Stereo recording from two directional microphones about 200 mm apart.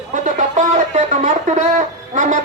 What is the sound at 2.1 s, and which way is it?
Music, 40° right (ahead or behind).